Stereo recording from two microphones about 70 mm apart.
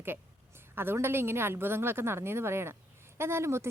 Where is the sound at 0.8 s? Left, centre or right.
Right.